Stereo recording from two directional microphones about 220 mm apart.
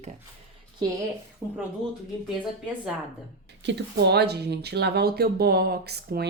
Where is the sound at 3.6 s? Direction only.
50° right (ahead or behind).